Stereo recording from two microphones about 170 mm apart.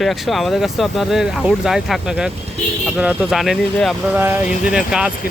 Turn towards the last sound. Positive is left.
turn(degrees=-5)  # may be behind; listen again after turning